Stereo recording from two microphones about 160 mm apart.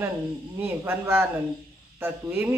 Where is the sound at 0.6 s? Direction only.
15° right (ahead or behind).